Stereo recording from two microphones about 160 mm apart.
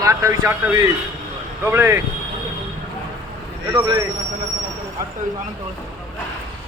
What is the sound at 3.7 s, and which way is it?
Speech, 25° right (ahead or behind).